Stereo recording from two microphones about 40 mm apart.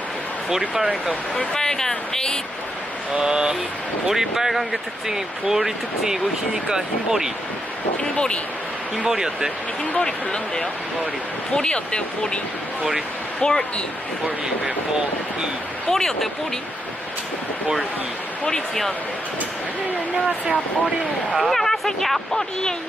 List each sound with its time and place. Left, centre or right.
0.5 s speech: centre
1.5 s speech: centre
3.2 s speech: right
4.1 s speech: centre
8.0 s speech: left
8.9 s speech: centre
9.9 s speech: centre
13.4 s speech: centre
15.9 s speech: centre
18.4 s speech: centre
21.3 s speech: centre